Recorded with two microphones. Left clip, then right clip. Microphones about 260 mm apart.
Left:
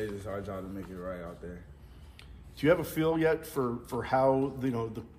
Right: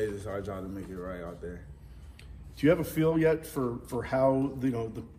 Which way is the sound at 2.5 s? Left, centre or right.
Left.